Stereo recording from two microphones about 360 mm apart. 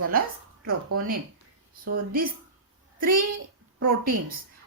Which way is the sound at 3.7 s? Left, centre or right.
Right.